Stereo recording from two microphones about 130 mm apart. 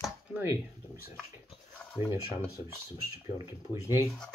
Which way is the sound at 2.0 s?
20° right (ahead or behind).